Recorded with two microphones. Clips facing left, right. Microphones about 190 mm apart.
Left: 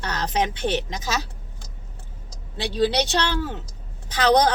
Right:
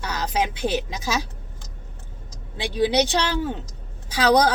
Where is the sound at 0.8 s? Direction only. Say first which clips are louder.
Right 1 dB; 10° right (ahead or behind).